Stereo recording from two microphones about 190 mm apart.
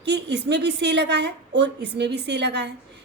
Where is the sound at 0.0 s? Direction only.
65° right (ahead or behind).